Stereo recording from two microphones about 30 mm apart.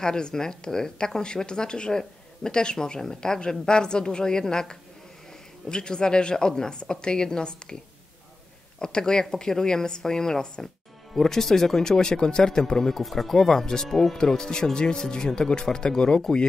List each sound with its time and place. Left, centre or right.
0.0 s speech: left
11.1 s speech: centre
13.0 s speech: centre; by 16.2 s left